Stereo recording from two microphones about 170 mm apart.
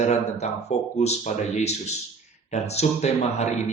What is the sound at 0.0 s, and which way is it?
A man's voice, 40° left (ahead or behind).